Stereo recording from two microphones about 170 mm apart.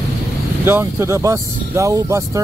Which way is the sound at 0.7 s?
15° right (ahead or behind).